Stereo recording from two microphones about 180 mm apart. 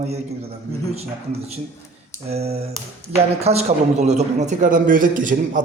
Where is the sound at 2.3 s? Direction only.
35° right (ahead or behind).